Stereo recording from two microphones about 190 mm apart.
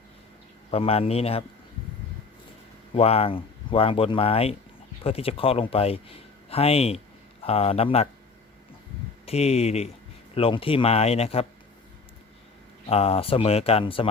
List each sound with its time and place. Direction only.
0.7 s speech: 30° left (ahead or behind)
2.9 s speech: 30° left (ahead or behind)
9.2 s speech: 35° left (ahead or behind)
12.9 s speech: 30° left (ahead or behind)